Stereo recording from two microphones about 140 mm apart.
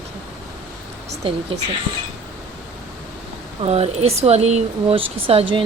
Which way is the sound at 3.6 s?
45° right (ahead or behind).